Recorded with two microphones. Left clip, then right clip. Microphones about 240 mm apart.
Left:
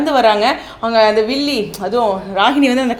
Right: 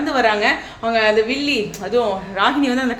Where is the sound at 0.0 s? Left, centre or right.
Left.